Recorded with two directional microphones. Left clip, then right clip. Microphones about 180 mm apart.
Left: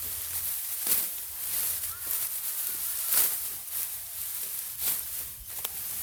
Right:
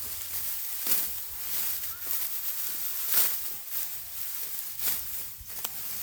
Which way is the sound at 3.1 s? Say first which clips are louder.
Even; 25° right (ahead or behind).